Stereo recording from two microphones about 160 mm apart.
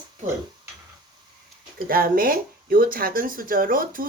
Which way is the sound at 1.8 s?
65° right (ahead or behind).